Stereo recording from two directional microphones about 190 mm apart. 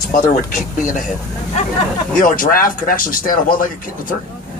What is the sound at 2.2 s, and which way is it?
Speech, 45° left (ahead or behind).